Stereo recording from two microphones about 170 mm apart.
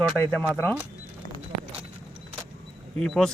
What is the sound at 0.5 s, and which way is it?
Speech, 10° left (ahead or behind).